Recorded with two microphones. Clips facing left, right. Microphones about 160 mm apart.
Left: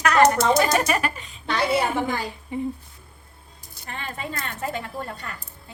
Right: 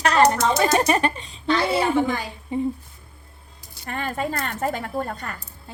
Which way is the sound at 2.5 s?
20° right (ahead or behind).